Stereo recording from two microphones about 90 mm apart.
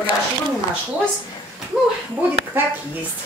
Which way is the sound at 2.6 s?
25° right (ahead or behind).